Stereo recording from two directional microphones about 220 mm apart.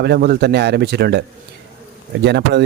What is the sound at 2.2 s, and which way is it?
Speech, 50° right (ahead or behind).